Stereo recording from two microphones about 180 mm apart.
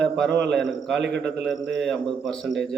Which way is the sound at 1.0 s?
70° right (ahead or behind).